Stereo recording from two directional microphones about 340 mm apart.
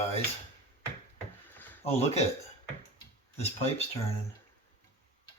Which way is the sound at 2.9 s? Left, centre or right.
Centre.